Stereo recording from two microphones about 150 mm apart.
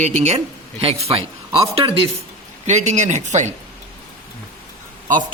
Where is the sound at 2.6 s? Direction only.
50° right (ahead or behind).